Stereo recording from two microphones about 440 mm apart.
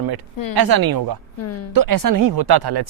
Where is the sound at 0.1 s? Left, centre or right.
Right.